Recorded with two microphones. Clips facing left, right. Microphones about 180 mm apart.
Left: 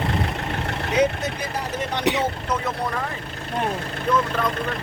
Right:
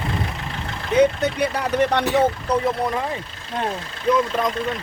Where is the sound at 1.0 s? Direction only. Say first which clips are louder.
Right 5 dB; 65° right (ahead or behind).